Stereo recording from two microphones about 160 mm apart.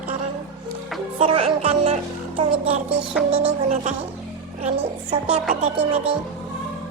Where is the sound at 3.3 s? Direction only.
35° right (ahead or behind).